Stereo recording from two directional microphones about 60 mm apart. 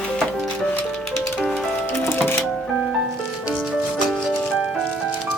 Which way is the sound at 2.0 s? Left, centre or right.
Left.